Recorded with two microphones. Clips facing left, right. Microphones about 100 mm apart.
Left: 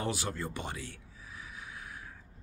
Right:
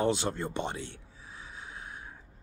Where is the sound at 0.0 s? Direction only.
25° right (ahead or behind).